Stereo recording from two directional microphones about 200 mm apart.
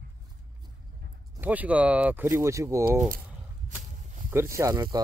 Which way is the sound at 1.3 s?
10° right (ahead or behind).